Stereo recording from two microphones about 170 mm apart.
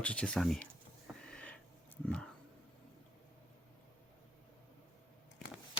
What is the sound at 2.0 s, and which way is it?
Speech, 5° left (ahead or behind).